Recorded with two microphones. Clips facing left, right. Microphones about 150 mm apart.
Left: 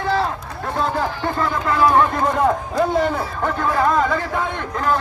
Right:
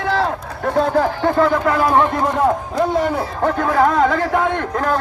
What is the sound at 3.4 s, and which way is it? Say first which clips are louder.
A man's voice: right 5 dB; 50° right (ahead or behind).